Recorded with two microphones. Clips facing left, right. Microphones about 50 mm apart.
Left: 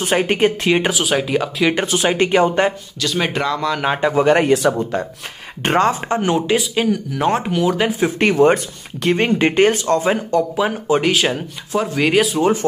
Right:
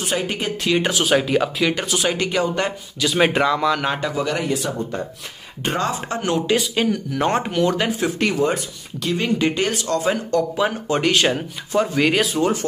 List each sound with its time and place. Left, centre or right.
0.0 s speech: left
0.8 s speech: centre
1.7 s speech: left
3.0 s speech: centre
4.0 s speech: left
4.5 s speech: left
5.6 s speech: left
5.9 s speech: left
6.1 s speech: left
6.5 s speech: centre
8.2 s speech: left
10.3 s speech: centre